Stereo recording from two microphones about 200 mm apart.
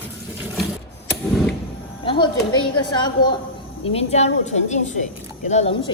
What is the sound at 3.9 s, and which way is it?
A woman's voice, 35° left (ahead or behind).